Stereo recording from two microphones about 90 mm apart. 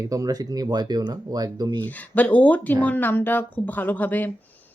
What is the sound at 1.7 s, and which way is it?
Speech, 20° left (ahead or behind).